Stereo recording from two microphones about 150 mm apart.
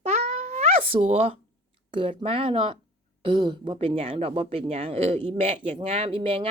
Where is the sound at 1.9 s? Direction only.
35° right (ahead or behind).